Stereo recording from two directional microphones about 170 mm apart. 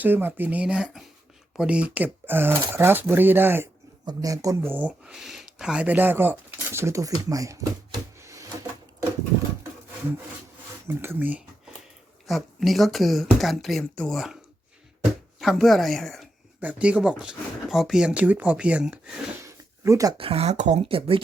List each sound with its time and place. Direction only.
0.0 s speech: 10° right (ahead or behind)
10.8 s speech: 15° right (ahead or behind)
15.4 s speech: centre (ahead or behind)
19.4 s a sound: 15° right (ahead or behind)
20.1 s speech: 35° right (ahead or behind)